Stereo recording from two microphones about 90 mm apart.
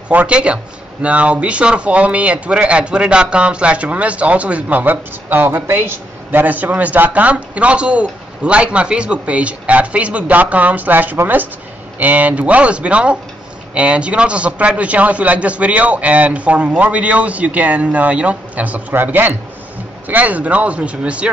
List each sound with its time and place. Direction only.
0.1 s speech: 15° right (ahead or behind)